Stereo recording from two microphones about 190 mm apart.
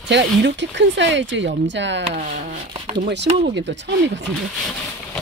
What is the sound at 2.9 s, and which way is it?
Speech, 60° right (ahead or behind).